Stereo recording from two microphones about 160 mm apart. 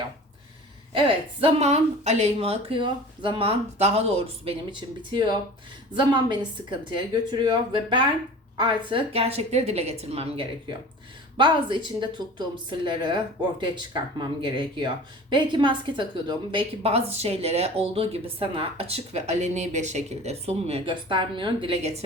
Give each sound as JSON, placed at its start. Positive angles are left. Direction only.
{"t": 0.9, "sound": "a woman's voice", "side_deg": -35}